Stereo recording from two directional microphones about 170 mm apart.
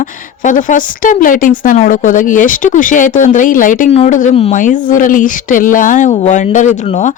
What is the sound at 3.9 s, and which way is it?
A man's voice, 40° left (ahead or behind).